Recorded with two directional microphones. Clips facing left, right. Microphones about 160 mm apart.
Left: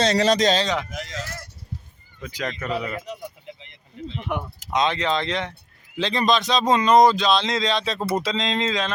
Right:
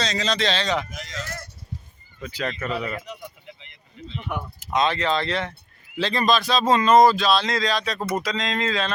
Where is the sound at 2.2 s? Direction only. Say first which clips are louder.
Even; 10° left (ahead or behind).